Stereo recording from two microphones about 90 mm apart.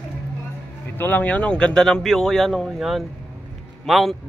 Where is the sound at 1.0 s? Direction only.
20° left (ahead or behind).